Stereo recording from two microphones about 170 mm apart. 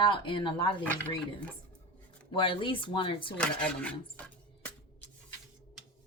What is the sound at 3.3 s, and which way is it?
Speech, 5° left (ahead or behind).